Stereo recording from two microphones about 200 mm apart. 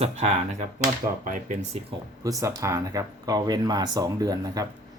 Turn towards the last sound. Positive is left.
turn(degrees=-20)  # may be behind; listen again after turning